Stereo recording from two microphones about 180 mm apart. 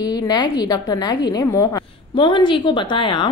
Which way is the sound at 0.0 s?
20° left (ahead or behind).